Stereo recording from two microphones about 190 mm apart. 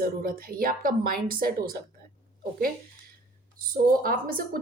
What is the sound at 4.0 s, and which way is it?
Speech, 50° right (ahead or behind).